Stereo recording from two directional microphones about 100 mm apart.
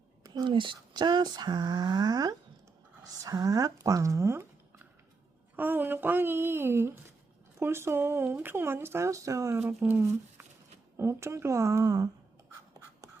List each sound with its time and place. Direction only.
0.2 s speech: 45° right (ahead or behind); by 9.6 s 30° right (ahead or behind)
9.6 s speech: 20° right (ahead or behind)